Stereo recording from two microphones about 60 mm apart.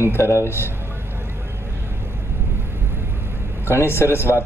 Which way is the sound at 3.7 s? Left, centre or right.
Left.